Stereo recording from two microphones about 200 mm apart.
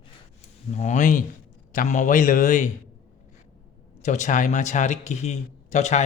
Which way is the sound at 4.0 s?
35° left (ahead or behind).